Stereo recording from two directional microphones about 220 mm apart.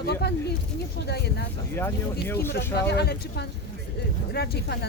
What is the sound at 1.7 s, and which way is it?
Speech, 10° left (ahead or behind).